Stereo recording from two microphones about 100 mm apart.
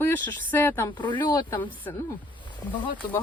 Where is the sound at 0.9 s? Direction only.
50° left (ahead or behind).